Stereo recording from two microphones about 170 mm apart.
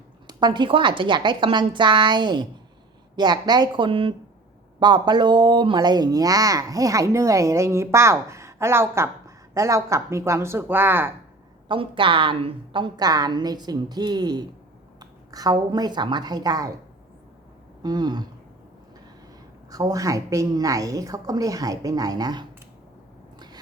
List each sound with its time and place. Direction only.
0.3 s a woman's voice: 25° right (ahead or behind)
11.7 s a woman's voice: 30° right (ahead or behind)
17.8 s a woman's voice: 25° right (ahead or behind)
19.7 s a woman's voice: 20° right (ahead or behind)